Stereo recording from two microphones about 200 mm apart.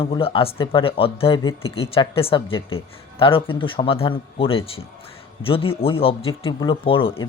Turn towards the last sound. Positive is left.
turn(degrees=25)  # may be behind; listen again after turning